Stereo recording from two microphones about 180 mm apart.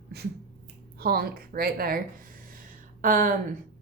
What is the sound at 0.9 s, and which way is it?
A woman's voice, 60° right (ahead or behind).